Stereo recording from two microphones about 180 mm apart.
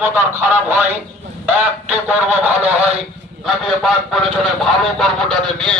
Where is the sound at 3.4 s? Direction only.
Centre (ahead or behind).